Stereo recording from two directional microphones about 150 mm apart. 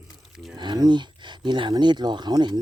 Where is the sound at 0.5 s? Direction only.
30° right (ahead or behind).